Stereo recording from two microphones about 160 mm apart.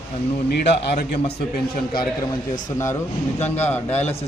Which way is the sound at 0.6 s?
90° left.